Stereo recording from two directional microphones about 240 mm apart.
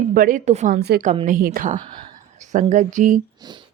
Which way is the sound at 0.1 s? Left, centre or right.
Right.